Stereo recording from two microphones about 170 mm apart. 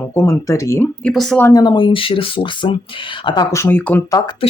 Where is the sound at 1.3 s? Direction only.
20° left (ahead or behind).